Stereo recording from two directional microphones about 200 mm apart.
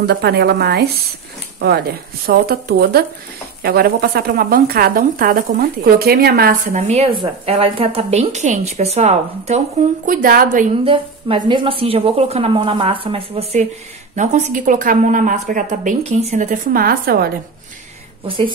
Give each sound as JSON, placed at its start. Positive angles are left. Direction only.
{"t": 0.0, "sound": "a woman's voice", "side_deg": -55}
{"t": 2.2, "sound": "a woman's voice", "side_deg": -50}
{"t": 10.0, "sound": "a woman's voice", "side_deg": -45}
{"t": 10.8, "sound": "a woman's voice", "side_deg": -25}
{"t": 18.2, "sound": "a woman's voice", "side_deg": -25}